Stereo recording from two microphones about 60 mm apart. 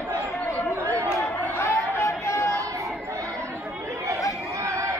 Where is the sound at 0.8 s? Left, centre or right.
Right.